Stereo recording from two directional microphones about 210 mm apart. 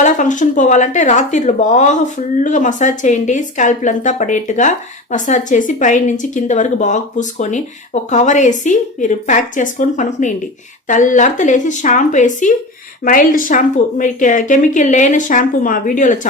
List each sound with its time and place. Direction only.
0.0 s speech: 35° left (ahead or behind)